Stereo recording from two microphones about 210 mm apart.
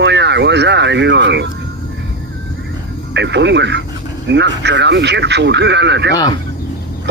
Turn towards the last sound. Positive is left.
turn(degrees=-55)  # may be behind; listen again after turning